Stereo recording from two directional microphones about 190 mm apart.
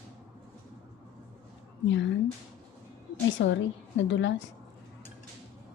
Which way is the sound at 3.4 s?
65° left (ahead or behind).